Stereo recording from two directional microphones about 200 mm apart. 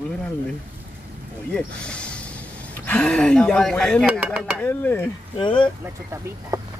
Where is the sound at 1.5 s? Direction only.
5° left (ahead or behind).